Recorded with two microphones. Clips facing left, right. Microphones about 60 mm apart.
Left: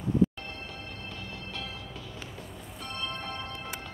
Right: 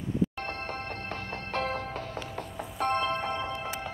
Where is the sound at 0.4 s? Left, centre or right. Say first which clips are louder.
Right 6 dB; right.